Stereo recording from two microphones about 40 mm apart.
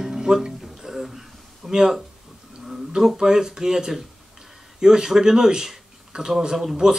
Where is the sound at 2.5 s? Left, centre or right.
Centre.